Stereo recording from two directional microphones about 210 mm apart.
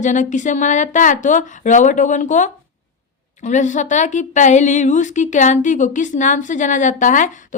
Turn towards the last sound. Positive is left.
turn(degrees=35)  # may be behind; listen again after turning